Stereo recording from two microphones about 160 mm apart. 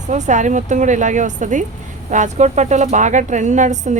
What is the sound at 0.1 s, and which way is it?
A woman's voice, 50° right (ahead or behind).